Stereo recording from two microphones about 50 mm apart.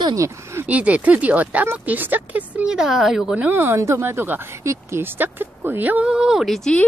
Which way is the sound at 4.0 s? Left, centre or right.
Right.